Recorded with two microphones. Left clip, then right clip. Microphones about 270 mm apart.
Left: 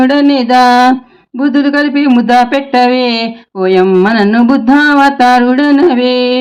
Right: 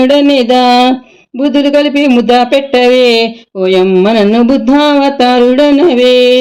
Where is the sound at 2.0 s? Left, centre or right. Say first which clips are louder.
Right 1 dB; left.